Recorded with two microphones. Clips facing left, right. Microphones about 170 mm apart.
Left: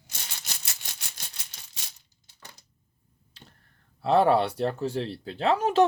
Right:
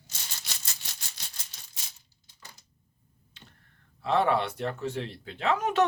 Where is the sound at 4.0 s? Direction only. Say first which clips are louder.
Left 4 dB; 35° left (ahead or behind).